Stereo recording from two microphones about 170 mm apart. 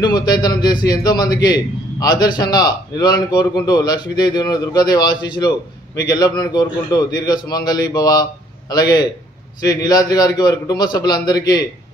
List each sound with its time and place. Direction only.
0.0 s a man's voice: 25° left (ahead or behind)